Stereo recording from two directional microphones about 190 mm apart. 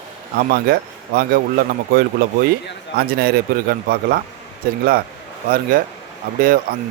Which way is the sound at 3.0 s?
55° right (ahead or behind).